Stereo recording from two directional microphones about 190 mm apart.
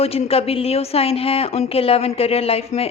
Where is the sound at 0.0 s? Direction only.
30° left (ahead or behind).